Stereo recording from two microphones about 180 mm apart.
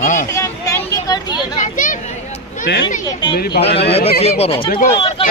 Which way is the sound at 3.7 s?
65° left (ahead or behind).